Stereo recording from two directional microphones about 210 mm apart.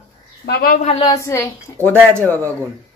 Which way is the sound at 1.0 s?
15° left (ahead or behind).